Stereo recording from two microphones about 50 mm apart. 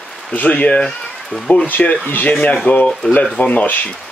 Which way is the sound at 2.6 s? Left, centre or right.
Left.